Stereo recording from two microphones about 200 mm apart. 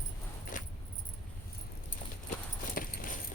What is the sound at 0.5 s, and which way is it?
Keys jangling, 40° left (ahead or behind).